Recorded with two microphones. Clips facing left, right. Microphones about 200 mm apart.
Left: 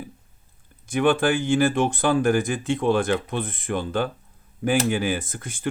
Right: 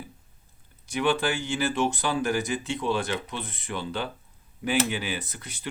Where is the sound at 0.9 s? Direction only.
50° left (ahead or behind).